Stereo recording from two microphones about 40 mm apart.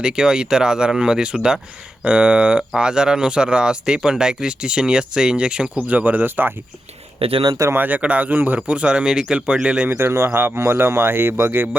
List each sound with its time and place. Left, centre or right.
0.0 s speech: centre
5.7 s speech: right
6.2 s speech: right
7.8 s speech: right
9.0 s speech: centre
9.9 s speech: right